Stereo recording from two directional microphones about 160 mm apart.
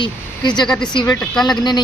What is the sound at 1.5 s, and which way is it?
Speech, 25° left (ahead or behind).